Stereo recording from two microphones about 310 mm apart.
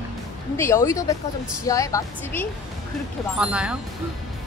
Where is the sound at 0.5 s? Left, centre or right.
Centre.